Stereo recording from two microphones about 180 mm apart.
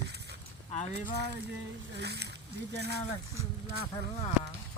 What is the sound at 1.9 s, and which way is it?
Speech, 65° right (ahead or behind).